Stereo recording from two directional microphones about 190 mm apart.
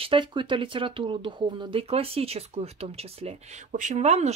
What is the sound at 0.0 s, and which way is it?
Speech, 25° right (ahead or behind).